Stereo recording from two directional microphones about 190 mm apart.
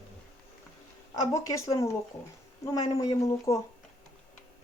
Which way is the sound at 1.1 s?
15° left (ahead or behind).